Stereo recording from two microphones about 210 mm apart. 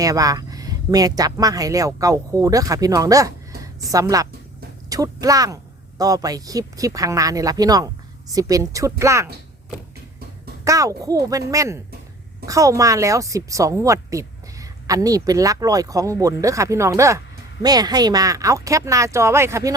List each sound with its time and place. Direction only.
0.0 s a woman's voice: 15° right (ahead or behind)
10.6 s a woman's voice: 15° right (ahead or behind)